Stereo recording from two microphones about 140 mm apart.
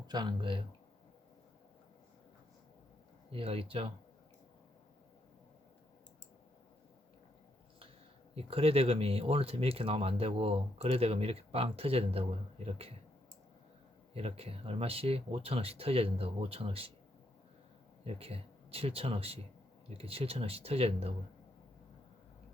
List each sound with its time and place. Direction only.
0.1 s speech: 30° right (ahead or behind)
3.3 s speech: 40° right (ahead or behind)
8.4 s speech: 45° right (ahead or behind)
14.1 s speech: 45° right (ahead or behind)
18.0 s speech: 45° right (ahead or behind)